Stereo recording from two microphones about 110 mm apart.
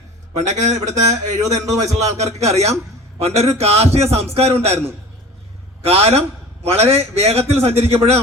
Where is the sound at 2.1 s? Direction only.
80° right.